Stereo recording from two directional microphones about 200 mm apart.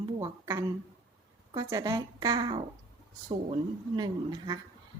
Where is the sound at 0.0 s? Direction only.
15° right (ahead or behind).